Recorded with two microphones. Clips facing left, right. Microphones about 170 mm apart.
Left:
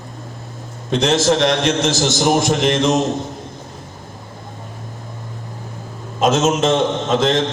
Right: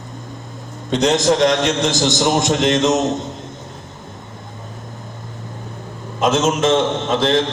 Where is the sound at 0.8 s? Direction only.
15° right (ahead or behind).